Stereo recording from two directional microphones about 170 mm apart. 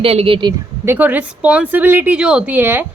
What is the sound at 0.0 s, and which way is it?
Speech, 35° right (ahead or behind).